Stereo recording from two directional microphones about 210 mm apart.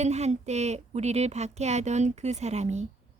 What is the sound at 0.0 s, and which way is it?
A woman's voice, 30° right (ahead or behind).